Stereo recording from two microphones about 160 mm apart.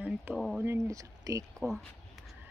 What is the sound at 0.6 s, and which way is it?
Speech, 20° right (ahead or behind).